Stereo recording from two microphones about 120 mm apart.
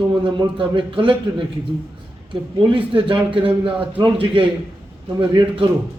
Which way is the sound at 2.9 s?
45° right (ahead or behind).